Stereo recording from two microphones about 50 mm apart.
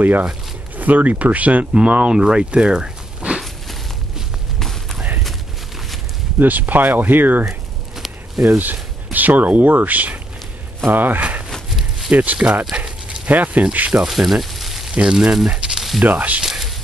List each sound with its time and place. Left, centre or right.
0.7 s speech: right
1.7 s speech: right
4.6 s a sound: centre
6.4 s speech: right
8.5 s speech: right
11.1 s walk: right
12.1 s speech: right
12.7 s dog: right
13.3 s speech: right
14.0 s a sound: centre
15.0 s speech: centre
15.4 s a sound: centre
16.0 s speech: right
16.4 s a sound: centre